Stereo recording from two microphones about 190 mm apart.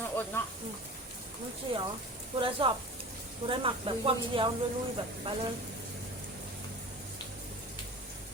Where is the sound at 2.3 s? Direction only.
25° right (ahead or behind).